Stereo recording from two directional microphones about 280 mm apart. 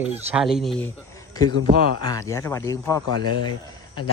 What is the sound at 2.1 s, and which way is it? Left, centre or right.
Speech, centre.